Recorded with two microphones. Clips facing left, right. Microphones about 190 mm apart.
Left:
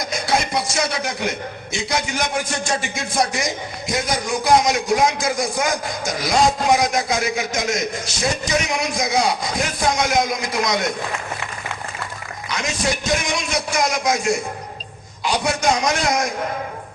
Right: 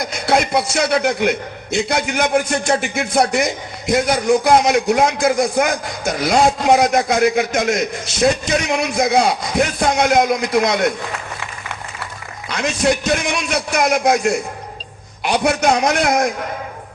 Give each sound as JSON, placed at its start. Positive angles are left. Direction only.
{"t": 0.0, "sound": "a man's voice", "side_deg": -60}
{"t": 12.5, "sound": "a man's voice", "side_deg": -60}
{"t": 15.2, "sound": "a man's voice", "side_deg": -60}